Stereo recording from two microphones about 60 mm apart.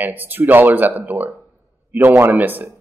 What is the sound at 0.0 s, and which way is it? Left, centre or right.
Speech, right.